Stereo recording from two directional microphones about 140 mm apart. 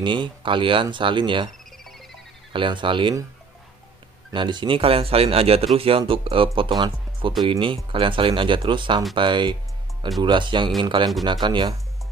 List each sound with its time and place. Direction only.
0.0 s speech: 35° right (ahead or behind)
2.5 s speech: 35° right (ahead or behind)
4.3 s speech: 35° right (ahead or behind)